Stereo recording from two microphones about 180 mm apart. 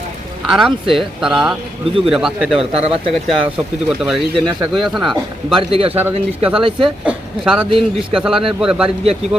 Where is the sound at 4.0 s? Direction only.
5° right (ahead or behind).